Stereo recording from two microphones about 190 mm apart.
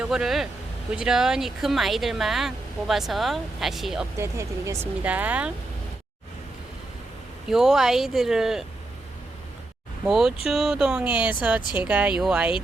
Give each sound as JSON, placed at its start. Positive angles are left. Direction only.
{"t": 0.0, "sound": "speech", "side_deg": -5}
{"t": 4.2, "sound": "speech", "side_deg": -15}
{"t": 7.5, "sound": "speech", "side_deg": 0}
{"t": 10.1, "sound": "speech", "side_deg": 0}